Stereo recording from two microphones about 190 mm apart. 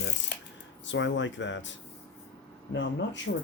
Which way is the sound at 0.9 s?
75° left (ahead or behind).